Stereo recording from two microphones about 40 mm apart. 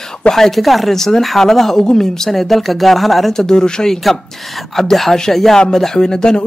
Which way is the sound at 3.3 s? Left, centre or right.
Centre.